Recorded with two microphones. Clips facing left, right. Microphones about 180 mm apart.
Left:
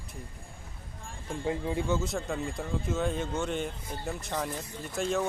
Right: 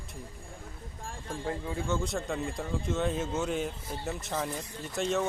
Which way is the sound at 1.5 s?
15° left (ahead or behind).